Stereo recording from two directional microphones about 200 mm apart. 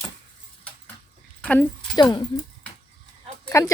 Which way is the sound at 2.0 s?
20° left (ahead or behind).